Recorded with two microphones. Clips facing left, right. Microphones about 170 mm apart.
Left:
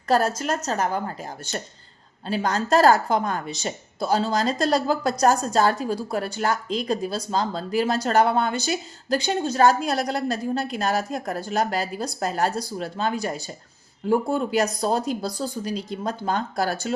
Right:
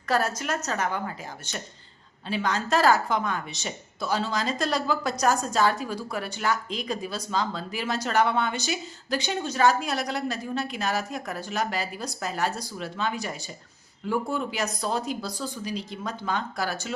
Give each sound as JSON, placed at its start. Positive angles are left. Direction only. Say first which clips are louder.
{"t": 0.1, "sound": "speech", "louder": "left 4 dB", "side_deg": 35}